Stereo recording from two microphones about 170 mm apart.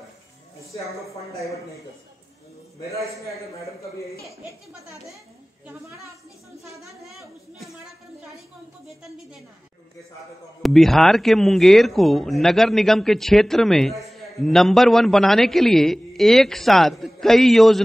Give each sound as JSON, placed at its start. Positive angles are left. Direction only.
{"t": 3.8, "sound": "speech", "side_deg": 20}
{"t": 6.8, "sound": "speech", "side_deg": 0}
{"t": 10.6, "sound": "speech", "side_deg": 0}